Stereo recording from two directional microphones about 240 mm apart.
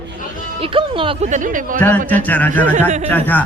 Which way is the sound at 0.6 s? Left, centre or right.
Right.